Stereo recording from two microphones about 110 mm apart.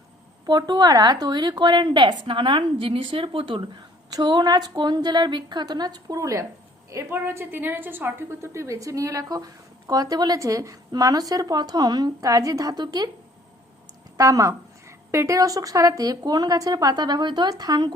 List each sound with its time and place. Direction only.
0.4 s a woman's voice: 40° right (ahead or behind)
4.1 s a woman's voice: 40° right (ahead or behind)
14.2 s a woman's voice: 30° right (ahead or behind)